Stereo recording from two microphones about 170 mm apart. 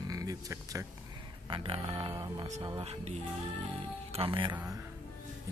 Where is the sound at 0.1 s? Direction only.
20° right (ahead or behind).